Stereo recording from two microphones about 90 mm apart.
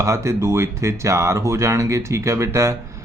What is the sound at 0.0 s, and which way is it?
A man's voice, 30° right (ahead or behind).